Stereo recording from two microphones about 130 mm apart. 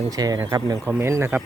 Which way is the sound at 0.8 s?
20° right (ahead or behind).